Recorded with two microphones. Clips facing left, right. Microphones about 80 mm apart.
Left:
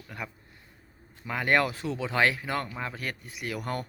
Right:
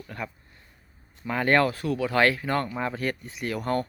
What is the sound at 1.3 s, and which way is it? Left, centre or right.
Speech, centre.